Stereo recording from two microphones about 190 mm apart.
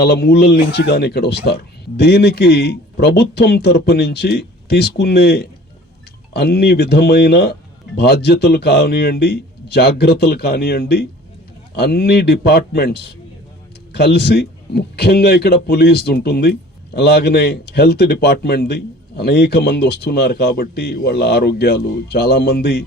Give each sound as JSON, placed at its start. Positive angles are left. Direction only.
{"t": 0.0, "sound": "speech", "side_deg": 55}